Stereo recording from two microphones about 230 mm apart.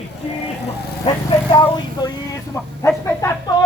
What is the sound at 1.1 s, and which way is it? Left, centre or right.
Speech, left.